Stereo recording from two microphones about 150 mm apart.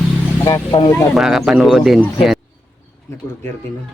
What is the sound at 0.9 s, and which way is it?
Speech, centre (ahead or behind).